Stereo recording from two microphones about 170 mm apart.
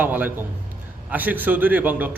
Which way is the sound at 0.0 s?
10° right (ahead or behind).